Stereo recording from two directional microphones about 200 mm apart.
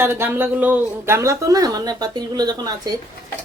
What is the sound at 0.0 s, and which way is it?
Speech, 10° right (ahead or behind).